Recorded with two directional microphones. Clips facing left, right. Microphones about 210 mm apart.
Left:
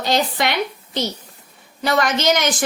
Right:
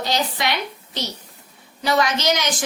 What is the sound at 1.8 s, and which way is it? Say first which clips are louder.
Speech: left 1 dB; 55° left (ahead or behind).